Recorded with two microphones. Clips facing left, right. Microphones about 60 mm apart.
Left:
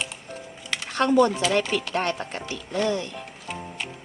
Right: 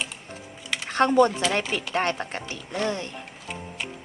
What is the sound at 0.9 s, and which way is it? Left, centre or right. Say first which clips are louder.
Speech: even; right.